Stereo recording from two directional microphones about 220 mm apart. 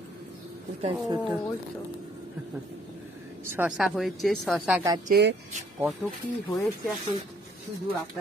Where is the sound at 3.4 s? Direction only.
10° right (ahead or behind).